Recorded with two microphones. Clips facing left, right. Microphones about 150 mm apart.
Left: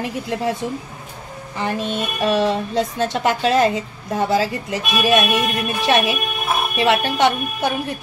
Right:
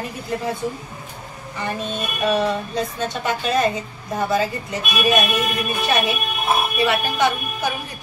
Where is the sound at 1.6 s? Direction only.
90° left.